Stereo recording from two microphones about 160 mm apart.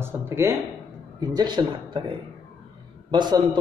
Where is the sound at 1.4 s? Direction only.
25° right (ahead or behind).